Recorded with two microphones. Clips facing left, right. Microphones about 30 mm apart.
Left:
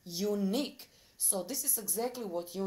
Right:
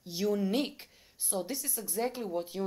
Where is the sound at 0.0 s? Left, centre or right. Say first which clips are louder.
Right 2 dB; centre.